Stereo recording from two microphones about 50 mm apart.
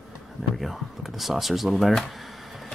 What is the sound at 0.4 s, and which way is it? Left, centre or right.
Speech, centre.